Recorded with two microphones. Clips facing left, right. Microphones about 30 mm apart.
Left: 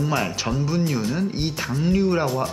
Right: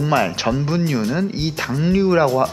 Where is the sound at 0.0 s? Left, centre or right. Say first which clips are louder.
Right 6 dB; centre.